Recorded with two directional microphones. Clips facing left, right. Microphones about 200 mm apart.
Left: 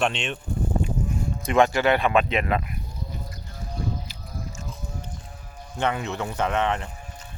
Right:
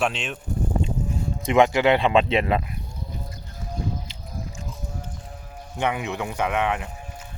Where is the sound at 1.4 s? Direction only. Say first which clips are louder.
Right 2 dB; 20° right (ahead or behind).